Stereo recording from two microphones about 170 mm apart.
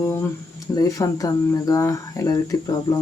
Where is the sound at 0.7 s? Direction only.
20° left (ahead or behind).